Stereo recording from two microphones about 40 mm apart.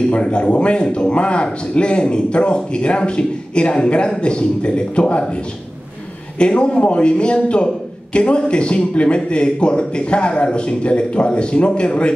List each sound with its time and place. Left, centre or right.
0.1 s a man's voice: left